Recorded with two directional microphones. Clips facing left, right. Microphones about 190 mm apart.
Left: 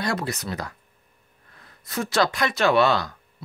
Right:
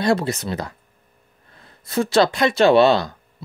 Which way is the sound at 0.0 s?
25° right (ahead or behind).